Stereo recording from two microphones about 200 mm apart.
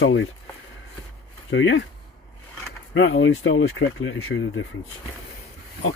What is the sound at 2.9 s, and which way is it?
Speech, 65° left (ahead or behind).